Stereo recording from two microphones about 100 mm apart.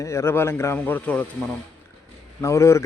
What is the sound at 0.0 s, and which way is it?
Speech, 30° left (ahead or behind).